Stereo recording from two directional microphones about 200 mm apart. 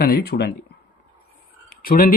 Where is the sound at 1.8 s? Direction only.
45° left (ahead or behind).